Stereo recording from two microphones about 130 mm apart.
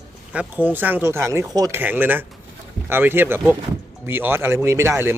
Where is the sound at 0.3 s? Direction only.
15° right (ahead or behind).